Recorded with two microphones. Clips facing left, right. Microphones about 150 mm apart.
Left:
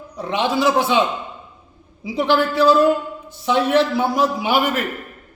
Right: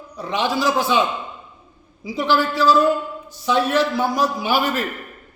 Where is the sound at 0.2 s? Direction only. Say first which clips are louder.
Left 2 dB; 20° left (ahead or behind).